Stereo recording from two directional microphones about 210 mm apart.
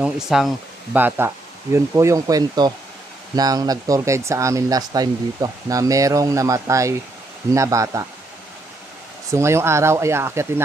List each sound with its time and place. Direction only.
0.0 s speech: centre (ahead or behind)
9.3 s speech: 15° right (ahead or behind)